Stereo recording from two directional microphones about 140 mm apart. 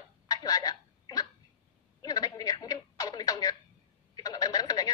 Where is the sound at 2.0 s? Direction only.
25° left (ahead or behind).